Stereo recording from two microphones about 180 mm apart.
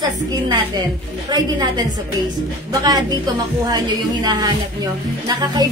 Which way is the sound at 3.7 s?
20° right (ahead or behind).